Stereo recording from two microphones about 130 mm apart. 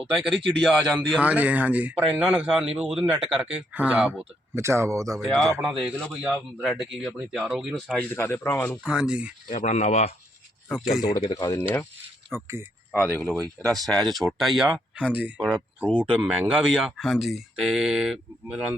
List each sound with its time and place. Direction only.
0.1 s speech: centre (ahead or behind)
1.2 s speech: 10° right (ahead or behind)
4.5 s speech: 20° right (ahead or behind)
5.2 s speech: centre (ahead or behind)
7.9 s speech: 15° left (ahead or behind)
8.8 s speech: 5° right (ahead or behind)
9.6 s speech: 60° left (ahead or behind)
11.2 s speech: 30° left (ahead or behind)
12.3 s speech: 20° right (ahead or behind)
13.1 s speech: 15° left (ahead or behind); by 15.4 s 10° right (ahead or behind)
15.9 s speech: 10° left (ahead or behind)
16.2 s speech: 10° right (ahead or behind)